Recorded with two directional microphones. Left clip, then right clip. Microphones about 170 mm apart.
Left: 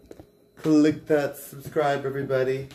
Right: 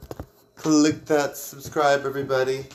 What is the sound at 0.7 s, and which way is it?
Speech, 25° left (ahead or behind).